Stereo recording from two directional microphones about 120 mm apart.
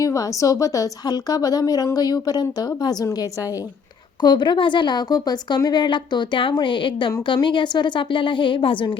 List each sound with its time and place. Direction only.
0.0 s a woman's voice: 25° left (ahead or behind); by 8.9 s 45° left (ahead or behind)